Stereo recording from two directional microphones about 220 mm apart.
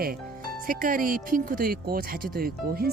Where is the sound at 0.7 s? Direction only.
40° right (ahead or behind).